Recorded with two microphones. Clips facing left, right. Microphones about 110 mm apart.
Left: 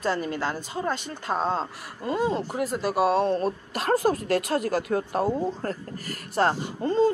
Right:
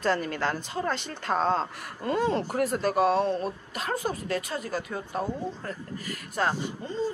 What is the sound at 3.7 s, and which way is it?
Speech, 60° left (ahead or behind).